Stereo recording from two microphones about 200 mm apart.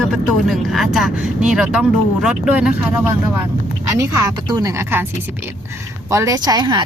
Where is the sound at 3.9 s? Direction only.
15° right (ahead or behind).